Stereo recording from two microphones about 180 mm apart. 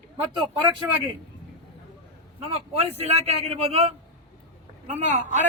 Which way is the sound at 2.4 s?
35° right (ahead or behind).